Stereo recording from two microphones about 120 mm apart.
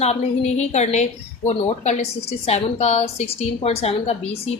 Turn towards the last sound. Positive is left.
turn(degrees=55)  # may be behind; listen again after turning